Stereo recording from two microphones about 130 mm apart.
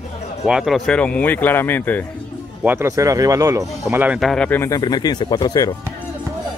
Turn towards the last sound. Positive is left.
turn(degrees=30)  # may be behind; listen again after turning